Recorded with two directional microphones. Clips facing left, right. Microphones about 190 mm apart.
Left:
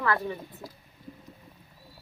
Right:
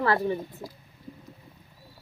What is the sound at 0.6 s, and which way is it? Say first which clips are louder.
Speech: right 3 dB; 5° right (ahead or behind).